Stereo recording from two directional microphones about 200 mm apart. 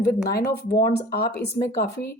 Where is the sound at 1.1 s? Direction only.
50° left (ahead or behind).